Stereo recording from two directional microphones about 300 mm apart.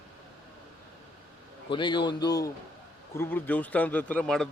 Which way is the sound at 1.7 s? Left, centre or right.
Centre.